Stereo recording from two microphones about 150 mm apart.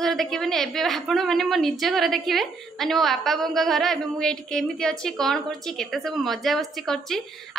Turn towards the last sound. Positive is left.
turn(degrees=0)  # may be behind; listen again after turning